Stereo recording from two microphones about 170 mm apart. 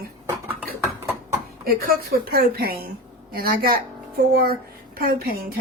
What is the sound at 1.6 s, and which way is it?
Speech, 60° right (ahead or behind).